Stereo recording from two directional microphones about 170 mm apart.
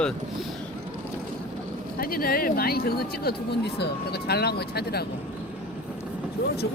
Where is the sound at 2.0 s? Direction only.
60° left (ahead or behind).